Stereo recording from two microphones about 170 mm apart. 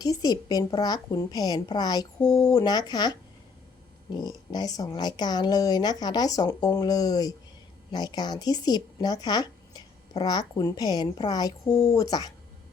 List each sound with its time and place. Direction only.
0.0 s a woman's voice: 25° left (ahead or behind)